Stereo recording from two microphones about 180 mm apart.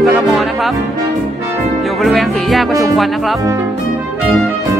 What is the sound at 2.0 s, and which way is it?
Speech, centre (ahead or behind).